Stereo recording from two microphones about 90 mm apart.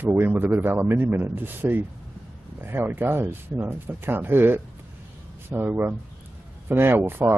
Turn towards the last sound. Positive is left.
turn(degrees=-25)  # may be behind; listen again after turning